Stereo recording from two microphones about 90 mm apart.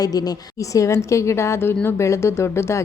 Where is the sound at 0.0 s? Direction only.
45° left (ahead or behind).